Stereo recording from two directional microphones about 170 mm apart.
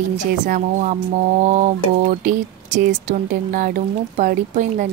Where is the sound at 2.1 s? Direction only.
45° right (ahead or behind).